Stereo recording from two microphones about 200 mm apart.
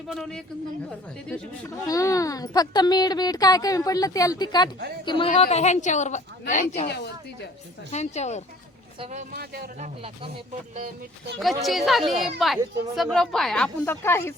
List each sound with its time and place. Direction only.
0.1 s a woman's voice: centre (ahead or behind); by 6.8 s 35° left (ahead or behind)
6.8 s speech: 55° left (ahead or behind)
7.9 s a woman's voice: 35° left (ahead or behind)
9.3 s speech: 50° right (ahead or behind)
11.3 s speech: centre (ahead or behind)